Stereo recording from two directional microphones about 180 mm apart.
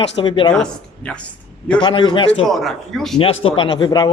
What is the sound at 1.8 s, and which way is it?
Speech, 25° left (ahead or behind).